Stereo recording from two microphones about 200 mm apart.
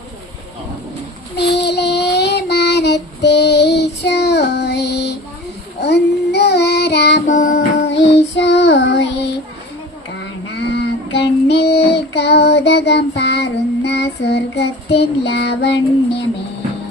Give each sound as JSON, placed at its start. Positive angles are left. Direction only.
{"t": 1.4, "sound": "child singing", "side_deg": 60}
{"t": 7.3, "sound": "music", "side_deg": 40}
{"t": 7.8, "sound": "music", "side_deg": 60}
{"t": 10.7, "sound": "child singing", "side_deg": 60}